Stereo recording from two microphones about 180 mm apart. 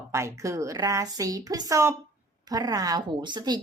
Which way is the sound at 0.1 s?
15° right (ahead or behind).